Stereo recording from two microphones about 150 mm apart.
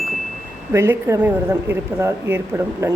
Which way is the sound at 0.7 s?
20° right (ahead or behind).